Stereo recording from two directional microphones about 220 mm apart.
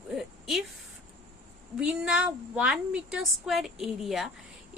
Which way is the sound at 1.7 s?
5° right (ahead or behind).